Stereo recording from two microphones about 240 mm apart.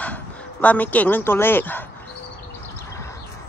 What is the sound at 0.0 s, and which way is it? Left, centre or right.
Speech, centre.